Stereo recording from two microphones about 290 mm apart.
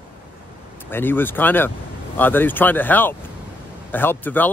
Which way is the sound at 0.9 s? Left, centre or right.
Centre.